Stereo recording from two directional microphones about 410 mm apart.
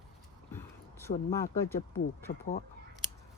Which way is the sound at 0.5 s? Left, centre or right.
Centre.